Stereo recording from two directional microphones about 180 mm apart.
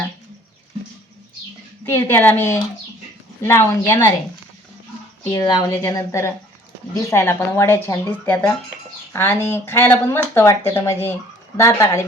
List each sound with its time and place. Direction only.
1.8 s speech: 15° left (ahead or behind)
5.3 s speech: 20° left (ahead or behind)